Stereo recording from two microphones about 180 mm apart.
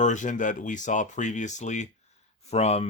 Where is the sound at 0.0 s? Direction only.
45° left (ahead or behind).